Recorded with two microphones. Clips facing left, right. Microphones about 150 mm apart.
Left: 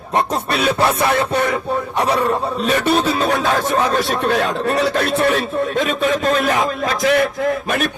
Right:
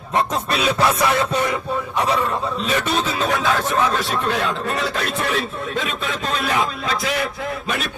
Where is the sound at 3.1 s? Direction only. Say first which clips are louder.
Left 3 dB; 35° left (ahead or behind).